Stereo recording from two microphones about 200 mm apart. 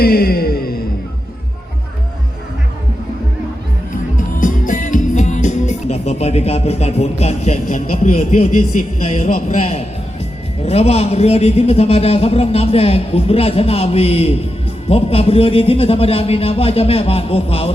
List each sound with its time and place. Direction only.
0.0 s music: 50° left (ahead or behind)
4.4 s music: 40° left (ahead or behind)
7.7 s a man's voice: 40° left (ahead or behind)